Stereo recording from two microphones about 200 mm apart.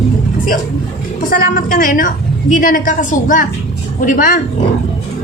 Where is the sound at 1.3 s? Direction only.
45° left (ahead or behind).